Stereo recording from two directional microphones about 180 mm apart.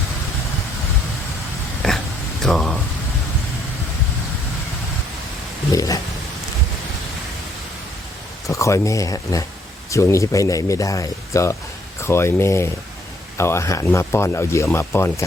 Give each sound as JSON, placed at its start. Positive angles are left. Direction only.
{"t": 1.8, "sound": "oink", "side_deg": 0}
{"t": 2.4, "sound": "speech", "side_deg": 0}
{"t": 5.7, "sound": "speech", "side_deg": 20}
{"t": 8.4, "sound": "speech", "side_deg": 15}